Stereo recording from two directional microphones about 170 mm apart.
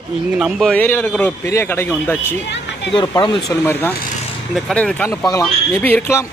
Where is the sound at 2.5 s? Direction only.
90° left.